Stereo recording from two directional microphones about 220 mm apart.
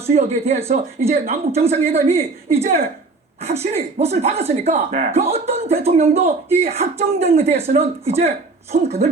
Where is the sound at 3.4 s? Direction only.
30° right (ahead or behind).